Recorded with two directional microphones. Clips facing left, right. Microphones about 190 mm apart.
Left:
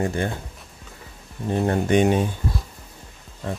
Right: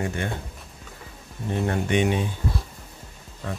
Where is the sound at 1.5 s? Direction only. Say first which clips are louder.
Left 4 dB; 40° left (ahead or behind).